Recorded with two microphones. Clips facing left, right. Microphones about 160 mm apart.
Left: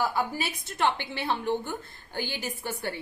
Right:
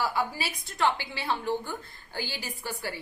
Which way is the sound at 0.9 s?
60° left (ahead or behind).